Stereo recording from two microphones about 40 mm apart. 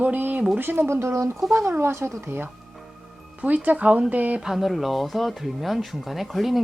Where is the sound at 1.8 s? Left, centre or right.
Right.